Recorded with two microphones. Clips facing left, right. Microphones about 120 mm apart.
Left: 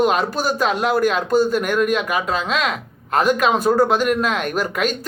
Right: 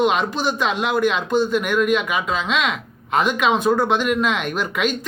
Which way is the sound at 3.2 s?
40° left (ahead or behind).